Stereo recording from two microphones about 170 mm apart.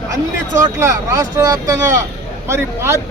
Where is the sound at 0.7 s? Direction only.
15° right (ahead or behind).